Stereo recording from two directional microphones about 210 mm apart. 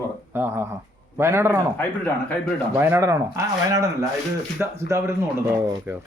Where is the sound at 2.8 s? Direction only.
10° right (ahead or behind).